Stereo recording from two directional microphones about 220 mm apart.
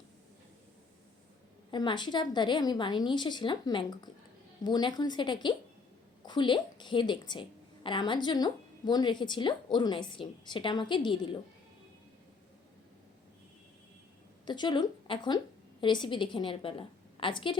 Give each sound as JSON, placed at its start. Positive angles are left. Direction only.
{"t": 1.7, "sound": "a woman's voice", "side_deg": 20}
{"t": 14.4, "sound": "a woman's voice", "side_deg": 20}